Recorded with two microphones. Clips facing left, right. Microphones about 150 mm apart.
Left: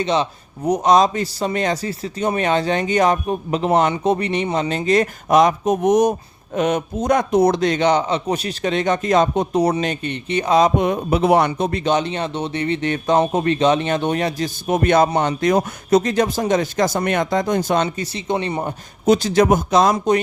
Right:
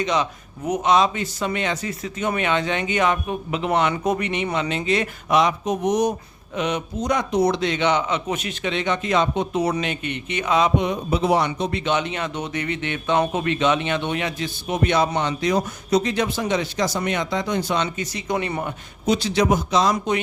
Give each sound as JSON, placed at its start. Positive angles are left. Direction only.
{"t": 0.0, "sound": "speech", "side_deg": 30}
{"t": 3.9, "sound": "speech", "side_deg": 30}
{"t": 17.8, "sound": "speech", "side_deg": 30}
{"t": 19.0, "sound": "speech", "side_deg": 45}